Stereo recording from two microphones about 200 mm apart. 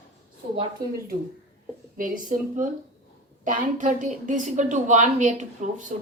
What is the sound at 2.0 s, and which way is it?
A woman's voice, 45° right (ahead or behind).